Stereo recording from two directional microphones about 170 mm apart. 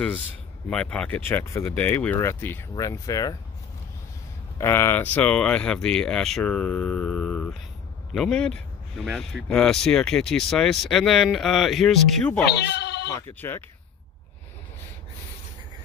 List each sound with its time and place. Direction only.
0.7 s speech: 5° left (ahead or behind)
4.6 s speech: 15° left (ahead or behind)
12.4 s speech: 85° left
13.1 s speech: 15° left (ahead or behind)